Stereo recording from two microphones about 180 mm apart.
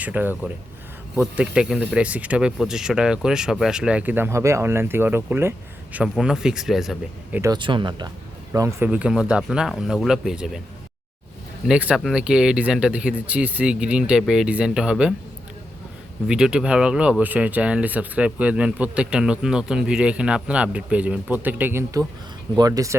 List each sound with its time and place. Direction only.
0.0 s speech: 10° right (ahead or behind)
7.5 s speech: 25° right (ahead or behind)
8.5 s speech: 15° right (ahead or behind)
11.6 s speech: 5° right (ahead or behind)
16.2 s speech: 5° right (ahead or behind)